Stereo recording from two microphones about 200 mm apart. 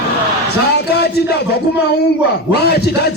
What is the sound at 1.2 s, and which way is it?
Speech, 55° left (ahead or behind).